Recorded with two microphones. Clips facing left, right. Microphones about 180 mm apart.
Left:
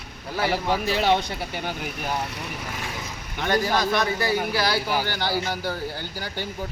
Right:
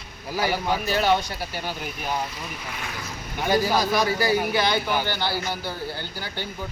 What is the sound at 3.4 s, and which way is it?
Speech, 5° right (ahead or behind).